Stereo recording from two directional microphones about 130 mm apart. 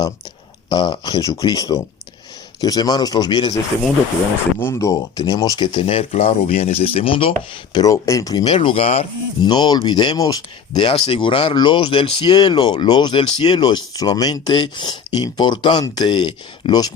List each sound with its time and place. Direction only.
0.7 s speech: 35° left (ahead or behind)
4.6 s speech: 20° left (ahead or behind)
5.7 s speech: 45° left (ahead or behind)
7.7 s speech: 30° left (ahead or behind); by 9.0 s 50° left (ahead or behind)
9.4 s speech: 35° left (ahead or behind)
10.8 s speech: 45° left (ahead or behind)